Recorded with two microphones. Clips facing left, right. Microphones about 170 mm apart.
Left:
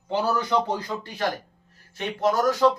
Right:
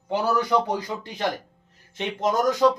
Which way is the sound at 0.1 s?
10° right (ahead or behind).